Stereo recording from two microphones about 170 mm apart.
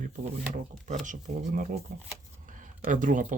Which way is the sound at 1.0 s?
50° right (ahead or behind).